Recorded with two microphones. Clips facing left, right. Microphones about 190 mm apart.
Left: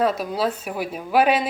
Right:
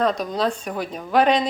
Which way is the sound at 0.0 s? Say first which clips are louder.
Even; 5° left (ahead or behind).